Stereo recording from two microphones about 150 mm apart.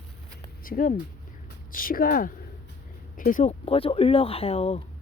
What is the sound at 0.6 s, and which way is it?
Speech, 65° left (ahead or behind).